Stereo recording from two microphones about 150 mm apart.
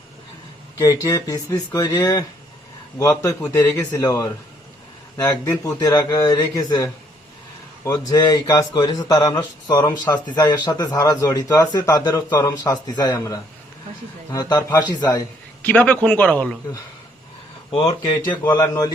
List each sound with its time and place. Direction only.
0.8 s a man's voice: 20° left (ahead or behind)
15.6 s a man's voice: 10° left (ahead or behind)
17.7 s a man's voice: 35° left (ahead or behind)